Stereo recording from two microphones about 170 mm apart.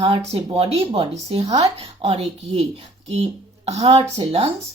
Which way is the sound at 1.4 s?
20° right (ahead or behind).